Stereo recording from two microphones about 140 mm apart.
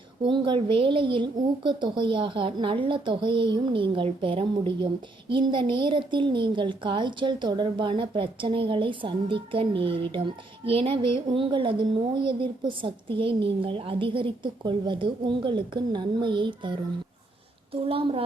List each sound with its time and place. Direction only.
0.2 s speech: 35° right (ahead or behind)
17.8 s speech: 40° right (ahead or behind)